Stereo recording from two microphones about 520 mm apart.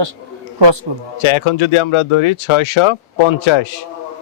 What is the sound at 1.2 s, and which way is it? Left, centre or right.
Speech, left.